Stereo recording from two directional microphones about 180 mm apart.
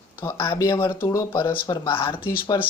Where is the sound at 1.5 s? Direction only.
10° left (ahead or behind).